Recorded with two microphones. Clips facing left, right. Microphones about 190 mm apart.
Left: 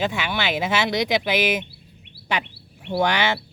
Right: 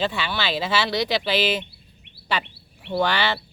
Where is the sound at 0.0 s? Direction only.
15° left (ahead or behind).